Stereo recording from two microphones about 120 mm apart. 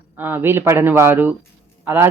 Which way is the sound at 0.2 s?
20° right (ahead or behind).